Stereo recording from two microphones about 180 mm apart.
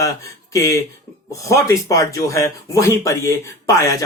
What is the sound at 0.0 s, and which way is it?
Speech, 15° left (ahead or behind).